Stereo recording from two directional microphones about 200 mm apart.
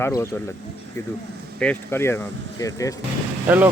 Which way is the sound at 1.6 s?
10° left (ahead or behind).